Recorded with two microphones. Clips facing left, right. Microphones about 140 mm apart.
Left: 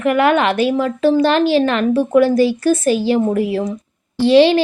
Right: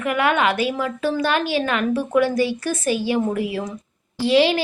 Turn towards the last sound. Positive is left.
turn(degrees=30)  # may be behind; listen again after turning